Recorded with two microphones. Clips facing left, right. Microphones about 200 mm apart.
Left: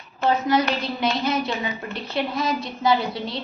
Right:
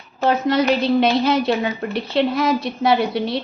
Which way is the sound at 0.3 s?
70° right (ahead or behind).